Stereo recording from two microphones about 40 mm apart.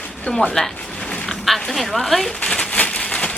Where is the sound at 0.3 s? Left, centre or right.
Left.